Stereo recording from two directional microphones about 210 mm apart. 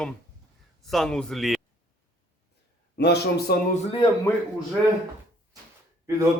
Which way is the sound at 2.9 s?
55° left (ahead or behind).